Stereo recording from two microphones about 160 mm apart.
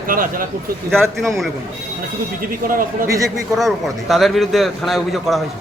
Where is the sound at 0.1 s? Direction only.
60° right (ahead or behind).